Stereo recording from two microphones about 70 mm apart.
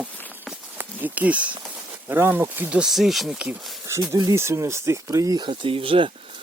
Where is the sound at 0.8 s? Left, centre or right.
Right.